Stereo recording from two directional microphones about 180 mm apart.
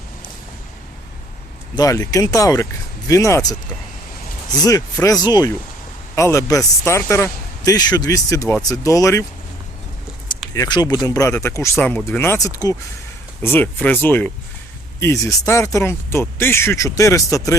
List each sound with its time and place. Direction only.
1.7 s speech: 20° left (ahead or behind)
4.6 s speech: 20° left (ahead or behind)
10.5 s speech: 20° left (ahead or behind)